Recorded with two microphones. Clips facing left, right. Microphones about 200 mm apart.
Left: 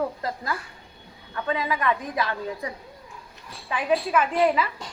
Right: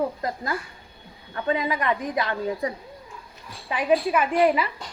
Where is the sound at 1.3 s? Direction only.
30° right (ahead or behind).